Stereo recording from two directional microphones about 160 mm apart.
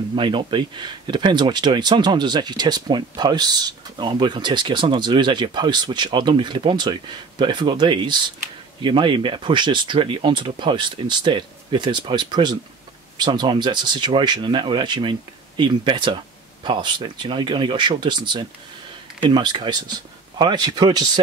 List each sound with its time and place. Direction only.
0.1 s speech: 30° right (ahead or behind)